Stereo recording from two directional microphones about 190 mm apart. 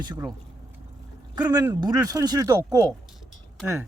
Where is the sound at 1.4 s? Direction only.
20° right (ahead or behind).